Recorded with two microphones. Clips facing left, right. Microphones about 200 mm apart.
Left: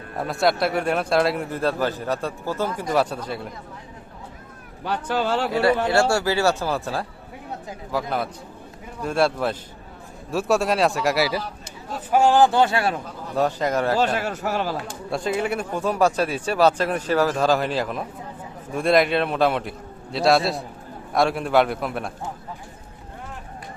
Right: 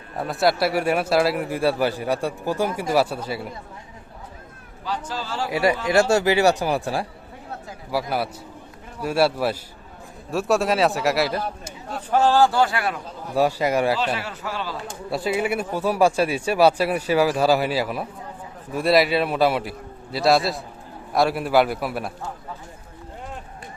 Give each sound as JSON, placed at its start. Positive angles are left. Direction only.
{"t": 0.2, "sound": "speech", "side_deg": 0}
{"t": 4.8, "sound": "speech", "side_deg": 60}
{"t": 5.5, "sound": "a man's voice", "side_deg": -15}
{"t": 12.1, "sound": "a man's voice", "side_deg": 15}
{"t": 13.3, "sound": "speech", "side_deg": -10}
{"t": 14.2, "sound": "a man's voice", "side_deg": 45}
{"t": 15.1, "sound": "a man's voice", "side_deg": -5}